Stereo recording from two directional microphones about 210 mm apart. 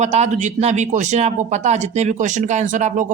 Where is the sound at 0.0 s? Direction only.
30° right (ahead or behind).